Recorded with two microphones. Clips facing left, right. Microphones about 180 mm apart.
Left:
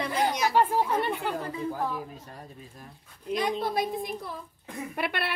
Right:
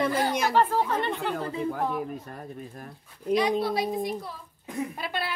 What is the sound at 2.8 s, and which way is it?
Speech, 45° right (ahead or behind).